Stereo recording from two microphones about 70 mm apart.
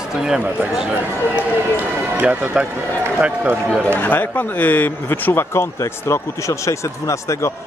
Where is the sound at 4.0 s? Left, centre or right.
Left.